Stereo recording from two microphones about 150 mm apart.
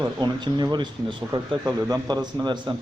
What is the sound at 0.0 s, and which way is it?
A man's voice, 30° right (ahead or behind).